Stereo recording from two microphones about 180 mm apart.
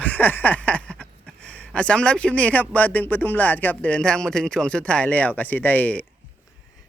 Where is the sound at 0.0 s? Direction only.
10° left (ahead or behind).